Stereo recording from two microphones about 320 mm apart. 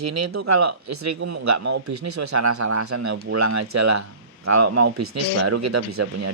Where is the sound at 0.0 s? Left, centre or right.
Right.